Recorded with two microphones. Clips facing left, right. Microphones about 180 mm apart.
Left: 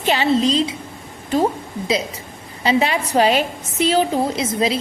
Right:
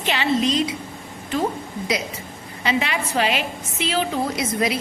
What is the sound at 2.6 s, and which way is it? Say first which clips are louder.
A woman's voice: left 5 dB; 35° left (ahead or behind).